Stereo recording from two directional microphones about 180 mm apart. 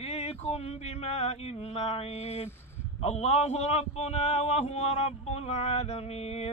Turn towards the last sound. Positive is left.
turn(degrees=35)  # may be behind; listen again after turning